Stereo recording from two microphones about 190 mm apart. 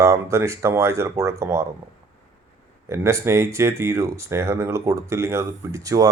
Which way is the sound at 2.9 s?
15° right (ahead or behind).